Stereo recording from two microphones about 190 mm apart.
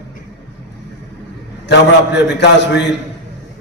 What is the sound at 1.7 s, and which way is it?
A man's voice, 65° left (ahead or behind).